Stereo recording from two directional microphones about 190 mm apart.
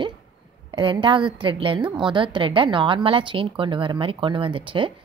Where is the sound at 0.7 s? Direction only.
25° right (ahead or behind).